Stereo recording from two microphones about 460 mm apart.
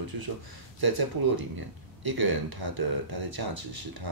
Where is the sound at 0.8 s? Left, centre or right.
Right.